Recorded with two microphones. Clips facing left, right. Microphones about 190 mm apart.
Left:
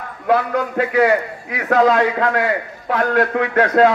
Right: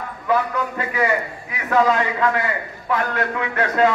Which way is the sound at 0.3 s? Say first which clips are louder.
Left 4 dB; 70° left (ahead or behind).